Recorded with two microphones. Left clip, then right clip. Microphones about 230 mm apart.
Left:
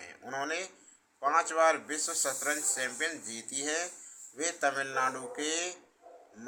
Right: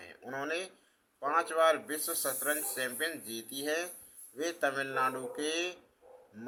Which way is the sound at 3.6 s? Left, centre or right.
Centre.